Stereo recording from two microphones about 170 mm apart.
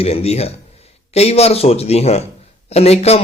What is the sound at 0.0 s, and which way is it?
A man's voice, 35° left (ahead or behind).